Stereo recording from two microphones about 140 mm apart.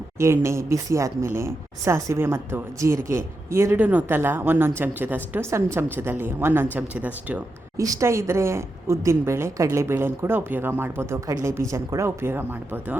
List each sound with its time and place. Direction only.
0.2 s a woman's voice: 20° right (ahead or behind)
7.8 s a woman's voice: 20° right (ahead or behind)